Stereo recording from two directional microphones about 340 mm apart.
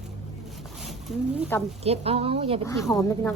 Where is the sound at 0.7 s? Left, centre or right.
Centre.